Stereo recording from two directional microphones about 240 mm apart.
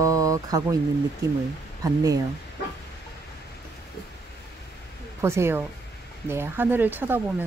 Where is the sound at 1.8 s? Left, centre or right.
Centre.